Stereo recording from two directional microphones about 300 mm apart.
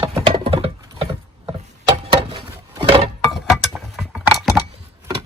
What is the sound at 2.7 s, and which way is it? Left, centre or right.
Chink, centre.